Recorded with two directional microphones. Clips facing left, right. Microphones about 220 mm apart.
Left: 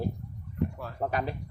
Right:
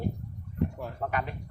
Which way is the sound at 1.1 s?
35° left (ahead or behind).